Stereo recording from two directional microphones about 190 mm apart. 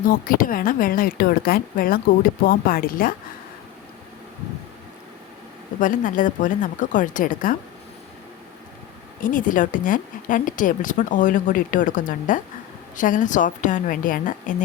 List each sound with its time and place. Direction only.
0.0 s a woman's voice: 50° left (ahead or behind)
5.8 s a woman's voice: 45° left (ahead or behind)
9.2 s a woman's voice: 45° left (ahead or behind)